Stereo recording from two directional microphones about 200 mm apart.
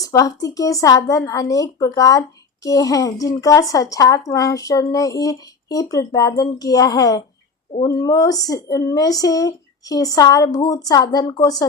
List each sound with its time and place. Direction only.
0.0 s speech: 15° left (ahead or behind)